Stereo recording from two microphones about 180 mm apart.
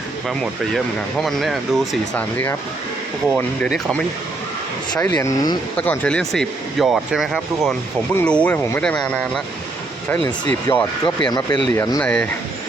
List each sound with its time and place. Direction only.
1.2 s speech: centre (ahead or behind)
10.2 s speech: 25° left (ahead or behind)
12.0 s speech: 5° left (ahead or behind)